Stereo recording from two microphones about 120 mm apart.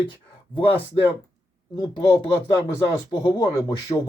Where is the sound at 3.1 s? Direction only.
40° left (ahead or behind).